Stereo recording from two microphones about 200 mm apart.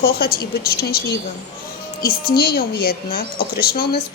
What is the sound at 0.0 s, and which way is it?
A woman's voice, 50° left (ahead or behind).